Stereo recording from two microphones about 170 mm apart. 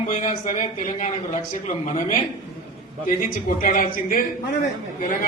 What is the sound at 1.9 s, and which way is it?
Speech, 45° left (ahead or behind).